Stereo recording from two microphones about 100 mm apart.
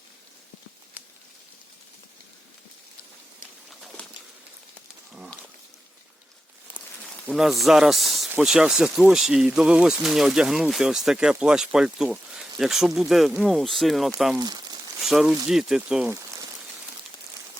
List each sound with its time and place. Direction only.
7.3 s speech: centre (ahead or behind)
14.3 s speech: 40° right (ahead or behind)
15.0 s speech: 5° right (ahead or behind)